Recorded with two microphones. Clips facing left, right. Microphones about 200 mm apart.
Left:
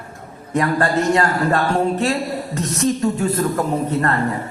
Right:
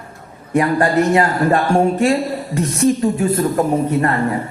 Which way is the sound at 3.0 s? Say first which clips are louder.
Right 2 dB; 10° right (ahead or behind).